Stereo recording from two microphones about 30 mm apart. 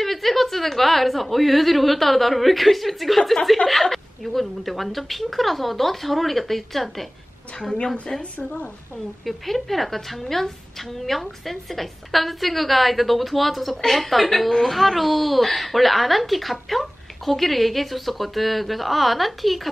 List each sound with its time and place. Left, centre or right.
0.0 s speech: centre
7.7 s a woman's voice: left
9.2 s speech: centre